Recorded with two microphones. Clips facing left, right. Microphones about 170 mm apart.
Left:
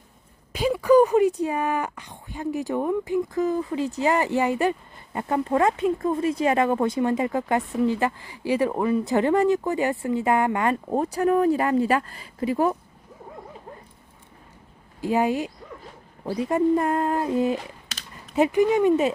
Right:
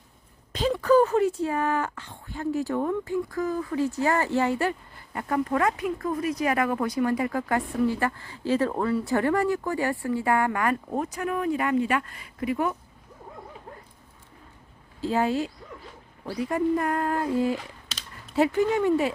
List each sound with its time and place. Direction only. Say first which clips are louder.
0.5 s speech: left 3 dB; 10° left (ahead or behind); by 12.7 s 30° left (ahead or behind)
15.0 s speech: left 2 dB; 15° left (ahead or behind)